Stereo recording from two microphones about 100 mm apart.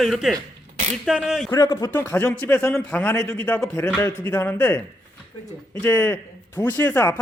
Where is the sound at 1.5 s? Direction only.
35° left (ahead or behind).